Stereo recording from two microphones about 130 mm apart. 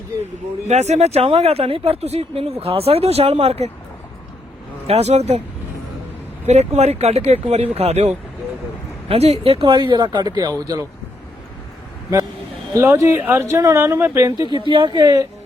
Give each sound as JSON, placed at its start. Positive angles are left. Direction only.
{"t": 0.7, "sound": "speech", "side_deg": -60}
{"t": 4.9, "sound": "speech", "side_deg": -55}
{"t": 6.4, "sound": "speech", "side_deg": -60}
{"t": 12.7, "sound": "speech", "side_deg": -20}
{"t": 14.4, "sound": "speech", "side_deg": -40}